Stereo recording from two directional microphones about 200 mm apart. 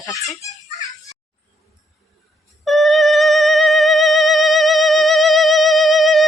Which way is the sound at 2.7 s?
Centre (ahead or behind).